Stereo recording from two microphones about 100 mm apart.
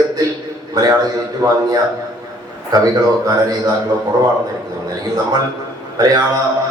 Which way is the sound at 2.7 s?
40° right (ahead or behind).